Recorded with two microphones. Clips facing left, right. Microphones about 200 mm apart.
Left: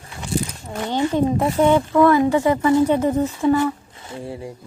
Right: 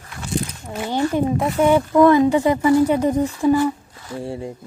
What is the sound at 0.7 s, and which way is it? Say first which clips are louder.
Music: even; 5° right (ahead or behind).